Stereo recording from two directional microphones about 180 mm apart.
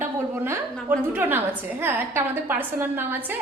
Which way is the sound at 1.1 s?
10° right (ahead or behind).